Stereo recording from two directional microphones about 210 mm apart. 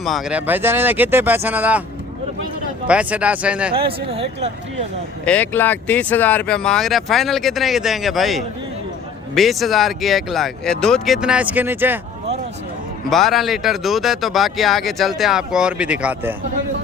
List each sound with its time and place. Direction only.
0.0 s speech: centre (ahead or behind)
2.8 s speech: 5° right (ahead or behind)
3.7 s speech: 25° right (ahead or behind)
5.2 s speech: 5° left (ahead or behind); by 11.9 s 10° right (ahead or behind)
13.1 s speech: centre (ahead or behind)